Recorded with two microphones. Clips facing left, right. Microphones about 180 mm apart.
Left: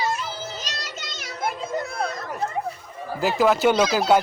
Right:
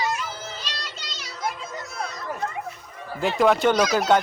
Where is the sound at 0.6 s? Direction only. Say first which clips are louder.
Left 2 dB; 45° left (ahead or behind).